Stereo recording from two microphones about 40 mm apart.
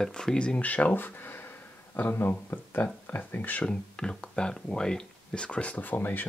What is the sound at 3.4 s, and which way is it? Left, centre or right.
Speech, left.